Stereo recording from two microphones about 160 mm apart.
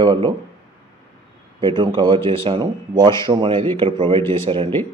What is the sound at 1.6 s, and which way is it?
Speech, 30° right (ahead or behind).